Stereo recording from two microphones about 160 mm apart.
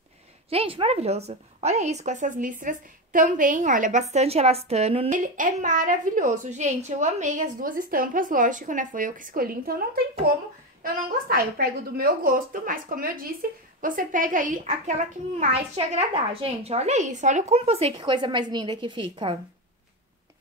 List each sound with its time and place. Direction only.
0.5 s a woman's voice: 35° right (ahead or behind)
5.1 s a woman's voice: 55° right (ahead or behind)
10.8 s a woman's voice: 70° right (ahead or behind); by 17.6 s 50° right (ahead or behind)
17.6 s a woman's voice: 40° right (ahead or behind)